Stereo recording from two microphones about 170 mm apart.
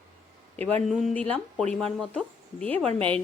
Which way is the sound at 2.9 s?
30° right (ahead or behind).